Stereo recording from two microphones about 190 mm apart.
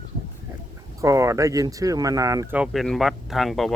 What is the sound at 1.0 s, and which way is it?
Speech, 15° right (ahead or behind).